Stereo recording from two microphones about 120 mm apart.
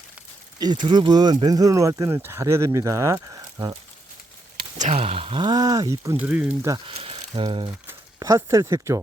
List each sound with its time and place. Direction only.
0.6 s speech: 40° right (ahead or behind)
4.8 s speech: 70° right (ahead or behind); by 6.1 s 25° right (ahead or behind)
6.1 s speech: 15° right (ahead or behind)
6.8 s speech: 50° right (ahead or behind)
8.2 s speech: 25° right (ahead or behind)